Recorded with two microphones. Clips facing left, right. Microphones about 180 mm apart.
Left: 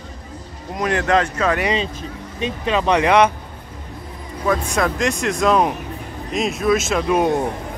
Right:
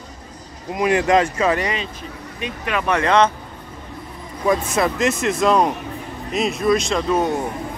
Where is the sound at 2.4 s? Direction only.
25° left (ahead or behind).